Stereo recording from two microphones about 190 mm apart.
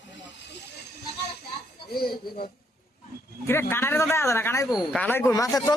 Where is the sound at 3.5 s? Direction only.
10° left (ahead or behind).